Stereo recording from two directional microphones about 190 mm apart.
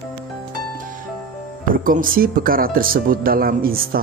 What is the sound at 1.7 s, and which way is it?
Speech, 45° right (ahead or behind).